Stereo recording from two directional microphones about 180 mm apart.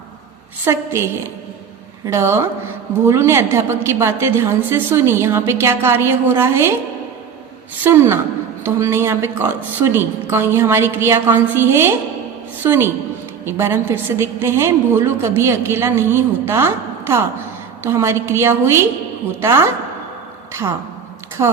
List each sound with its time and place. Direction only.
0.6 s a woman's voice: 15° right (ahead or behind)
7.9 s a woman's voice: 15° right (ahead or behind)
21.4 s a woman's voice: 20° right (ahead or behind)